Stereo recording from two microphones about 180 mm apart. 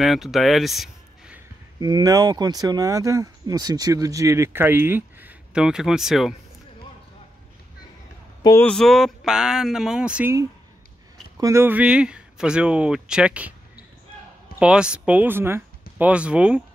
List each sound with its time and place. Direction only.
0.0 s speech: centre (ahead or behind)
1.8 s speech: 20° right (ahead or behind); by 6.3 s centre (ahead or behind)
8.4 s speech: 20° left (ahead or behind)
8.6 s speech: centre (ahead or behind)
11.3 s speech: 15° right (ahead or behind)
14.6 s speech: 5° right (ahead or behind)